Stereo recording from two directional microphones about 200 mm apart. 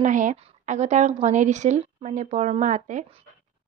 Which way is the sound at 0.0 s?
40° right (ahead or behind).